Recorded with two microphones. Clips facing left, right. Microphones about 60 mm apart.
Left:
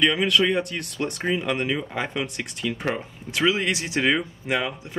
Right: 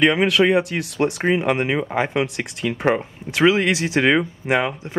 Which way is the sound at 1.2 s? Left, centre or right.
Right.